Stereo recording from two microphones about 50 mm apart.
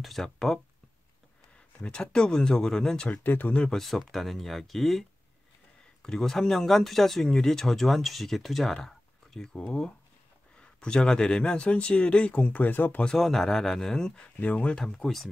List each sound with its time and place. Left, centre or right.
0.0 s speech: centre
1.8 s speech: centre
3.1 s speech: left
3.7 s speech: centre
6.0 s speech: centre; by 13.0 s left
13.2 s speech: centre
14.2 s speech: left
14.9 s speech: centre